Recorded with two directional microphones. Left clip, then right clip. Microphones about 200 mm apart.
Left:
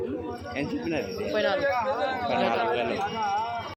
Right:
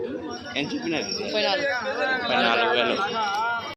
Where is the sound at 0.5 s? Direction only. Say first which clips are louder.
Right 3 dB; 5° left (ahead or behind).